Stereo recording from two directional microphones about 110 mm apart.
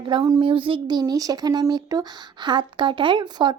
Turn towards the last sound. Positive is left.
turn(degrees=-40)  # may be behind; listen again after turning